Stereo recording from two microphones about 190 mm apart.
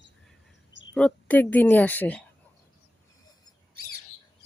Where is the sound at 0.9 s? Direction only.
5° left (ahead or behind).